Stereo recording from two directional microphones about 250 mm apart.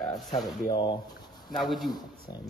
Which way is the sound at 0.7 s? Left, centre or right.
Centre.